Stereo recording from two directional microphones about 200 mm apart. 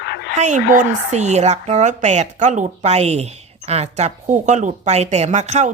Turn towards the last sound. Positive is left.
turn(degrees=-35)  # may be behind; listen again after turning